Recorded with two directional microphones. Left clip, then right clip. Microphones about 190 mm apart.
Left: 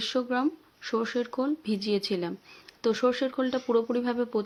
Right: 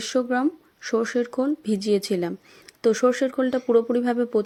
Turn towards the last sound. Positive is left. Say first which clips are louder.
# right 6 dB
turn(degrees=-20)  # may be behind; listen again after turning